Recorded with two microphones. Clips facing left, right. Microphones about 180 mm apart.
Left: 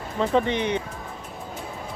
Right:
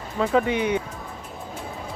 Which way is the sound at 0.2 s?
5° right (ahead or behind).